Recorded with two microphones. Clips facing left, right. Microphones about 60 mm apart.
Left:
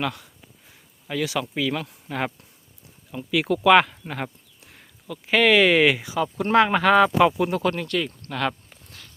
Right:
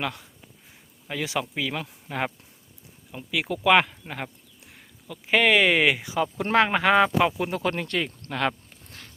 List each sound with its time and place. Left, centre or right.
0.0 s speech: centre